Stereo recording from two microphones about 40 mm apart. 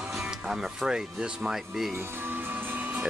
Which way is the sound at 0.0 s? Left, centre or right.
Centre.